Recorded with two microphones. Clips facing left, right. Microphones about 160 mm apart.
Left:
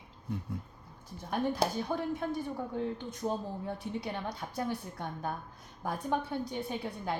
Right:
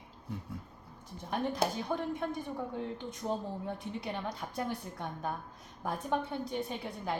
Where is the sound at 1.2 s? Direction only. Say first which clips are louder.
Left 1 dB; 5° left (ahead or behind).